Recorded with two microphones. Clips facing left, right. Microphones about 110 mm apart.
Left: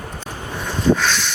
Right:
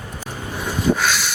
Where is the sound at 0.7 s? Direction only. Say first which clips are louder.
Left 2 dB; 10° right (ahead or behind).